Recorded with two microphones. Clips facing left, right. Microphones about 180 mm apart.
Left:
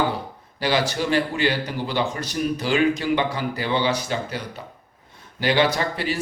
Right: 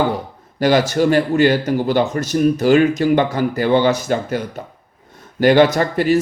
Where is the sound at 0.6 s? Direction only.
50° right (ahead or behind).